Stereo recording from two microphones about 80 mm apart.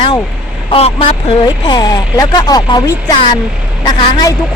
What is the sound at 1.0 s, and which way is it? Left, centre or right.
Speech, left.